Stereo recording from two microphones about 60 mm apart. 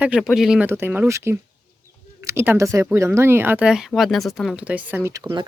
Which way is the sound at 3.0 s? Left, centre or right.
Right.